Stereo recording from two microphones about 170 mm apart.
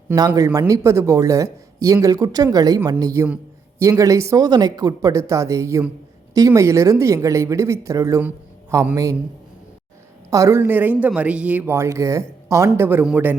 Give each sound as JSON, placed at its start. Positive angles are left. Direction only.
{"t": 0.1, "sound": "speech", "side_deg": -15}
{"t": 10.2, "sound": "speech", "side_deg": -20}